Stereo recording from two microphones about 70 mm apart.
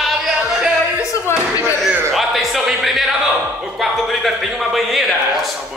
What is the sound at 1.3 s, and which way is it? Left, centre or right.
Speech, left.